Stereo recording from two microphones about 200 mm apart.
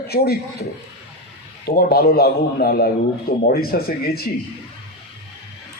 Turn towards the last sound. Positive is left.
turn(degrees=50)  # may be behind; listen again after turning